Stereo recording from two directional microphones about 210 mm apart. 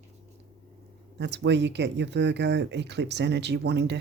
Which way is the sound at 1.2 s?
55° right (ahead or behind).